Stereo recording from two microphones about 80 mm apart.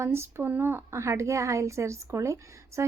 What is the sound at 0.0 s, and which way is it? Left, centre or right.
A woman's voice, right.